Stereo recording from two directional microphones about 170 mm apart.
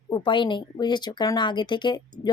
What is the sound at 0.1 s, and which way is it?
Speech, 30° left (ahead or behind).